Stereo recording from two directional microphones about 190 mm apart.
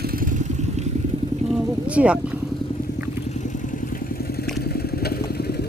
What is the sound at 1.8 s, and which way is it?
Speech, 5° right (ahead or behind).